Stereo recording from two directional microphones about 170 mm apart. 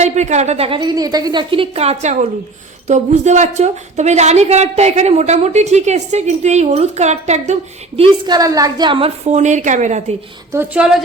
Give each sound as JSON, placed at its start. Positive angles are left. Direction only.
{"t": 0.0, "sound": "a woman's voice", "side_deg": -45}
{"t": 8.3, "sound": "a woman's voice", "side_deg": -20}
{"t": 10.5, "sound": "a woman's voice", "side_deg": -15}